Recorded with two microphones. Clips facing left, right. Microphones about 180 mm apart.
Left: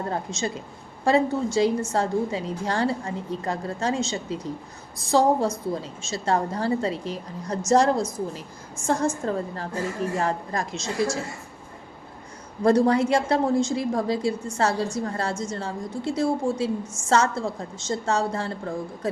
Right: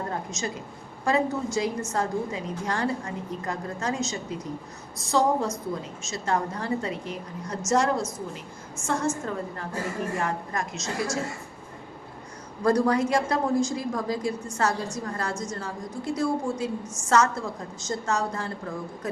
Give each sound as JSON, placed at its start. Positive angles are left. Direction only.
{"t": 0.1, "sound": "a woman's voice", "side_deg": 30}
{"t": 12.6, "sound": "a woman's voice", "side_deg": 25}